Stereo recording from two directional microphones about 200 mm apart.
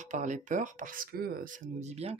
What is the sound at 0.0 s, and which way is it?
Speech, 40° right (ahead or behind).